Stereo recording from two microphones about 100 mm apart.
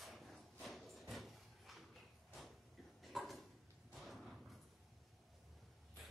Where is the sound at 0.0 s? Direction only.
Centre (ahead or behind).